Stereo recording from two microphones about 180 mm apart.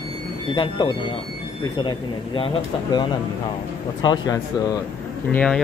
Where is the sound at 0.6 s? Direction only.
25° left (ahead or behind).